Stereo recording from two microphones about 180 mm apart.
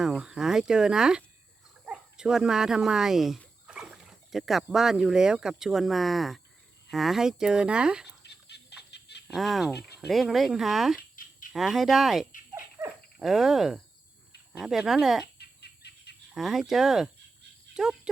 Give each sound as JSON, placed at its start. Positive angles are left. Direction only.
{"t": 0.0, "sound": "speech", "side_deg": -5}
{"t": 8.2, "sound": "fowl", "side_deg": 65}
{"t": 8.9, "sound": "chicken", "side_deg": 70}
{"t": 9.2, "sound": "speech", "side_deg": 0}
{"t": 15.4, "sound": "bird", "side_deg": 65}
{"t": 16.3, "sound": "speech", "side_deg": 0}
{"t": 17.7, "sound": "cricket", "side_deg": -5}